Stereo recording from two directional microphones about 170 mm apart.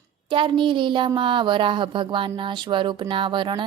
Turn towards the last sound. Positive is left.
turn(degrees=-30)  # may be behind; listen again after turning